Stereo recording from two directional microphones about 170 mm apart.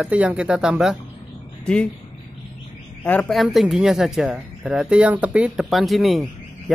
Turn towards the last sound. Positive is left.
turn(degrees=0)  # may be behind; listen again after turning